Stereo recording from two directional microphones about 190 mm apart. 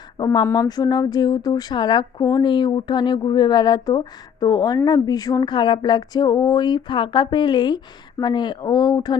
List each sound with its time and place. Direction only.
0.2 s a woman's voice: 20° left (ahead or behind)